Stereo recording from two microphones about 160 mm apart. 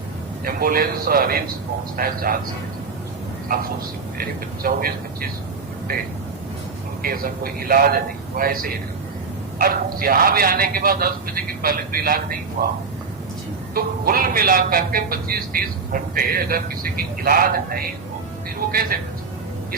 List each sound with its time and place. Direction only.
0.4 s speech: 65° right (ahead or behind)
4.2 s speech: 65° right (ahead or behind)
13.7 s speech: 65° right (ahead or behind)